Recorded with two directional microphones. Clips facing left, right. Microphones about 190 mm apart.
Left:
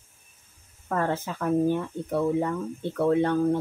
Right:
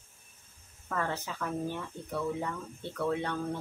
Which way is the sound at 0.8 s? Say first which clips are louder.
Left 7 dB; 45° left (ahead or behind).